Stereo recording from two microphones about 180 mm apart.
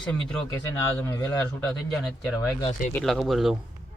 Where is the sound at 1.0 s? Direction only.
20° left (ahead or behind).